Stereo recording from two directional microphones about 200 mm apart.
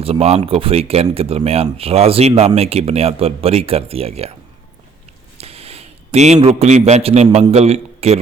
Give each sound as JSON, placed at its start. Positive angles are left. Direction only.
{"t": 0.0, "sound": "speech", "side_deg": -30}
{"t": 5.4, "sound": "a sound", "side_deg": -30}
{"t": 6.6, "sound": "a man's voice", "side_deg": -35}